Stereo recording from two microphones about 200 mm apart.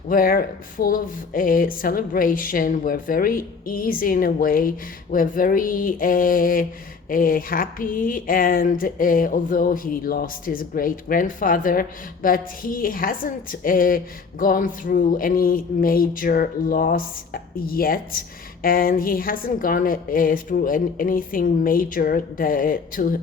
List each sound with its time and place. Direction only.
0.1 s speech: 45° left (ahead or behind)